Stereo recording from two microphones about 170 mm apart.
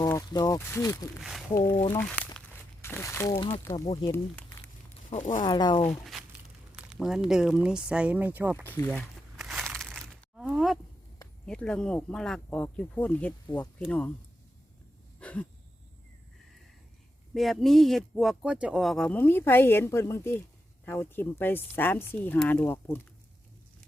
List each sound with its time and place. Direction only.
0.0 s speech: 20° left (ahead or behind)
1.2 s speech: centre (ahead or behind); by 3.8 s 15° left (ahead or behind)
4.1 s a sound: 10° left (ahead or behind)
5.1 s speech: 45° left (ahead or behind)
5.4 s speech: 25° left (ahead or behind)
6.7 s speech: 5° right (ahead or behind)
8.6 s speech: 10° left (ahead or behind)
9.4 s a sound: centre (ahead or behind)
11.4 s speech: 5° left (ahead or behind)
15.2 s a sound: 10° left (ahead or behind)
17.3 s speech: centre (ahead or behind)